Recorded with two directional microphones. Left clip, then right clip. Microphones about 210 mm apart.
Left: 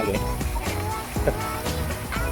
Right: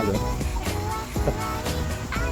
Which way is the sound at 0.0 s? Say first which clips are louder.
Even; centre (ahead or behind).